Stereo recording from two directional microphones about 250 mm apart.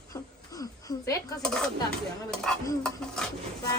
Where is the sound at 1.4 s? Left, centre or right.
Centre.